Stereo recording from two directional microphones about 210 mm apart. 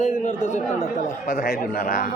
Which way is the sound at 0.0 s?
35° left (ahead or behind).